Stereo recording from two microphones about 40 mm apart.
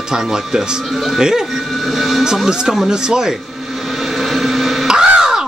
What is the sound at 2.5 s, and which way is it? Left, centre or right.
Speech, centre.